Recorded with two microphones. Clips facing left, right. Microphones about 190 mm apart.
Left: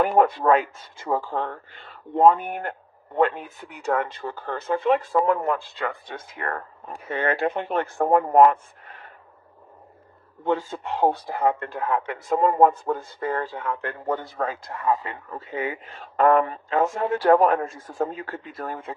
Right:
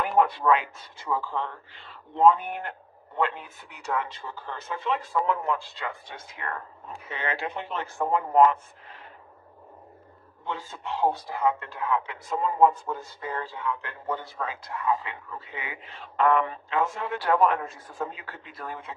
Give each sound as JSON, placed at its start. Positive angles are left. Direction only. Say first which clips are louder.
{"t": 0.0, "sound": "speech", "louder": "left 4 dB", "side_deg": 45}
{"t": 10.4, "sound": "speech", "louder": "left 10 dB", "side_deg": 50}